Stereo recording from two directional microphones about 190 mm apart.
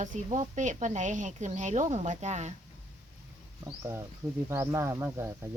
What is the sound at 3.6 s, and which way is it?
Speech, 15° right (ahead or behind).